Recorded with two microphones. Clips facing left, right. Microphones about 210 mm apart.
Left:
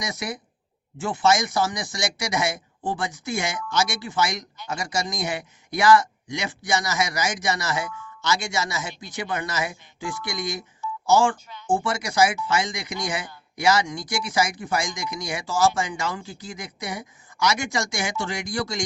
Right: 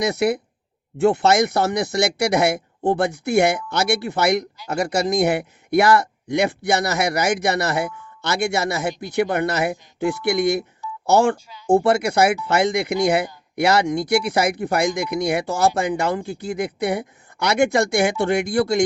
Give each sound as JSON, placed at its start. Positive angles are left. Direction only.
{"t": 0.0, "sound": "speech", "side_deg": -60}